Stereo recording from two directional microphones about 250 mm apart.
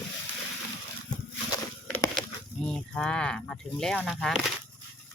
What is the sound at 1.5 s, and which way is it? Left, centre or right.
Walk, centre.